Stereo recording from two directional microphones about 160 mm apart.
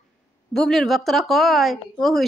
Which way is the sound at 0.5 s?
Centre (ahead or behind).